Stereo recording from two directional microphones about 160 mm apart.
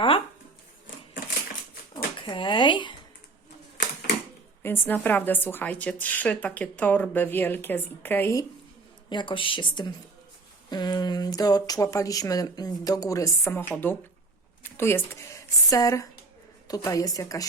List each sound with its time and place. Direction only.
2.2 s speech: 30° left (ahead or behind)
4.6 s a woman's voice: 15° left (ahead or behind)
9.0 s speech: 30° left (ahead or behind)